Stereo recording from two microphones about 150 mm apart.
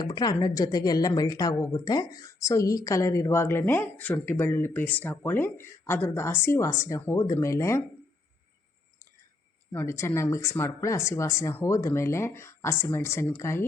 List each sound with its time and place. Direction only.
0.0 s a woman's voice: 25° left (ahead or behind)
9.7 s speech: 15° left (ahead or behind)